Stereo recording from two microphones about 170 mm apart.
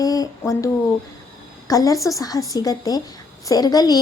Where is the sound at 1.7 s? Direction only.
20° left (ahead or behind).